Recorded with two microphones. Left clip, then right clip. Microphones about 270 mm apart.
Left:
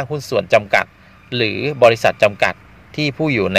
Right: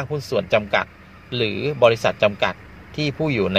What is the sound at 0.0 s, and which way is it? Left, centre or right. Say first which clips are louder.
Speech: left 4 dB; left.